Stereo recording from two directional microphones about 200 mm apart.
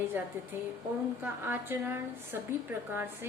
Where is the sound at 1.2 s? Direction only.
10° right (ahead or behind).